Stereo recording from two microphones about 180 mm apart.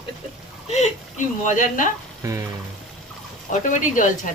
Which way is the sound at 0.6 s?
35° left (ahead or behind).